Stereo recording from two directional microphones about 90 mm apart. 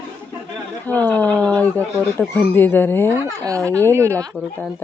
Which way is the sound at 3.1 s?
35° right (ahead or behind).